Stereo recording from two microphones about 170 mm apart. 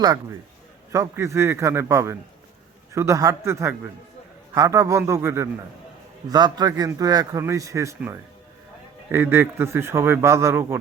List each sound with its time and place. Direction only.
0.9 s a man's voice: 15° right (ahead or behind)